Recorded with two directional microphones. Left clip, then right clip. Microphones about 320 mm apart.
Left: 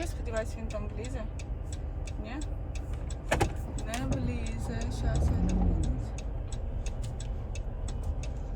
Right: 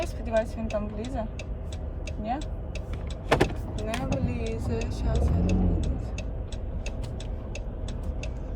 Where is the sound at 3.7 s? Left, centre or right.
Centre.